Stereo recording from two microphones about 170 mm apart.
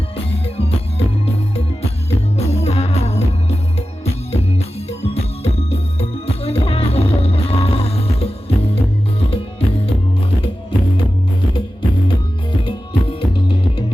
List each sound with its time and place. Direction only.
0.3 s music: 35° left (ahead or behind)
2.0 s music: 40° left (ahead or behind)
13.1 s music: 35° left (ahead or behind)